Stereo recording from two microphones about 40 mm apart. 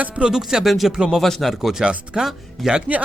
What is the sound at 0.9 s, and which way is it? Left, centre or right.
Speech, centre.